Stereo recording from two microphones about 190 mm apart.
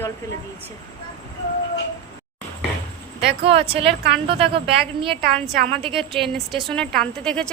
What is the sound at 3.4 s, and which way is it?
A woman's voice, 30° right (ahead or behind).